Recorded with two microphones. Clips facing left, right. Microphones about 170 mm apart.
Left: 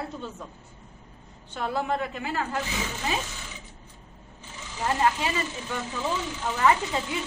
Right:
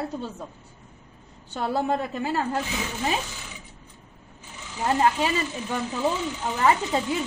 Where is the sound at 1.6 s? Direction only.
35° right (ahead or behind).